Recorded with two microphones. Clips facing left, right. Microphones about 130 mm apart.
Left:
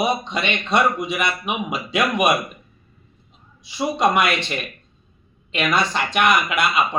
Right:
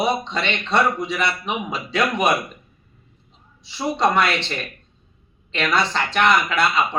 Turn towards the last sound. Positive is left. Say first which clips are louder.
# even
turn(degrees=15)  # may be behind; listen again after turning